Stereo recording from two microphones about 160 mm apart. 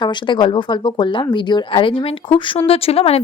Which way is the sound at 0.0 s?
30° left (ahead or behind).